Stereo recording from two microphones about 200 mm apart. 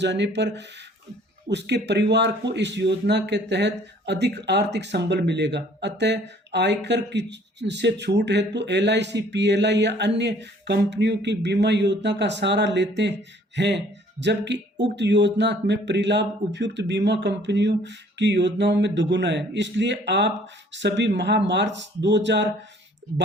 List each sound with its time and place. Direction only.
0.0 s speech: 60° right (ahead or behind)